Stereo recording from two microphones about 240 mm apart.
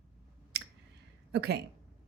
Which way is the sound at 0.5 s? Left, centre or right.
Right.